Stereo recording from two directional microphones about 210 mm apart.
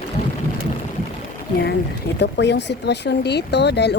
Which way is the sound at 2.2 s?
55° left (ahead or behind).